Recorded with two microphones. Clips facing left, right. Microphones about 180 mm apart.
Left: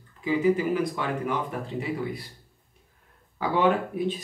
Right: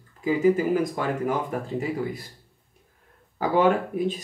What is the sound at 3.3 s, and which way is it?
Speech, 45° right (ahead or behind).